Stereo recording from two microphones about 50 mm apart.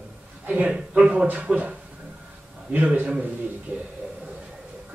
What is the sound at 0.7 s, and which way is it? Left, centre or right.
Speech, centre.